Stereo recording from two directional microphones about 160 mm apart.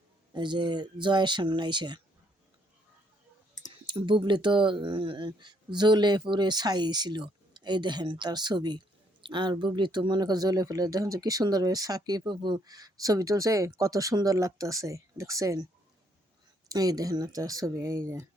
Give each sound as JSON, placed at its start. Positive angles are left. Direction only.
{"t": 0.3, "sound": "speech", "side_deg": -30}
{"t": 3.8, "sound": "speech", "side_deg": -30}
{"t": 16.6, "sound": "speech", "side_deg": -25}